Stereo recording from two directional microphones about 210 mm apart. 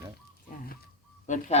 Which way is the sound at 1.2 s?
35° left (ahead or behind).